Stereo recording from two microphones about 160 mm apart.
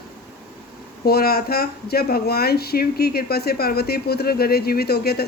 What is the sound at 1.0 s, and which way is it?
Speech, 75° left (ahead or behind).